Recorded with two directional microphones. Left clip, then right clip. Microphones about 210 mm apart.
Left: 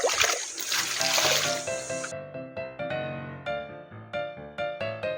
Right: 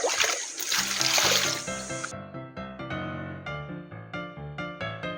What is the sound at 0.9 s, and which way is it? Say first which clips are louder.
Music: right 1 dB; 15° right (ahead or behind).